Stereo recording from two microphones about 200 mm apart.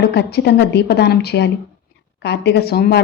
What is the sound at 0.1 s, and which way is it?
A woman's voice, 55° left (ahead or behind).